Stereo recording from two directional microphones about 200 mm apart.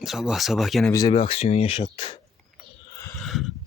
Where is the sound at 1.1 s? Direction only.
30° left (ahead or behind).